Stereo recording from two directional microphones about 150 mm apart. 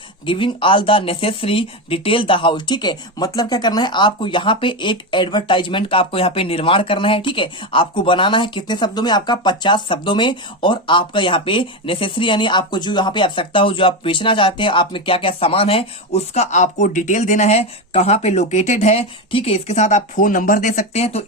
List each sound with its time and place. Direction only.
0.3 s speech: 35° left (ahead or behind)